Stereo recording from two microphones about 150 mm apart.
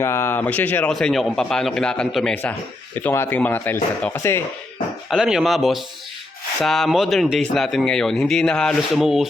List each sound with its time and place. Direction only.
0.0 s speech: 15° left (ahead or behind)
5.0 s speech: centre (ahead or behind)